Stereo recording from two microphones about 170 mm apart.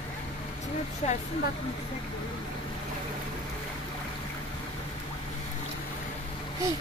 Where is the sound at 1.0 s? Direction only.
40° left (ahead or behind).